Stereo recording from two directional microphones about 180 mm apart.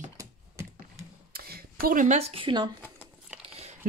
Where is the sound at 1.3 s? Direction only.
55° right (ahead or behind); by 2.7 s 25° right (ahead or behind).